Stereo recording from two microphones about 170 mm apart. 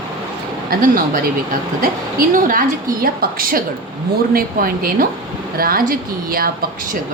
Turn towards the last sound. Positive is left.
turn(degrees=-60)  # may be behind; listen again after turning